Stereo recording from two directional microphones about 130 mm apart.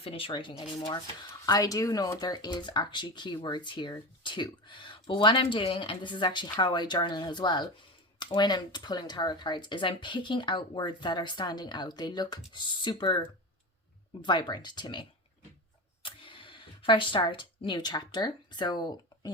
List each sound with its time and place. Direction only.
0.0 s speech: 45° left (ahead or behind)
1.5 s speech: 30° left (ahead or behind)
14.3 s speech: 35° left (ahead or behind)
16.0 s speech: 40° left (ahead or behind)